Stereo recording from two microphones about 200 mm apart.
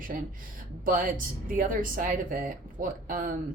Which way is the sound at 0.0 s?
45° right (ahead or behind).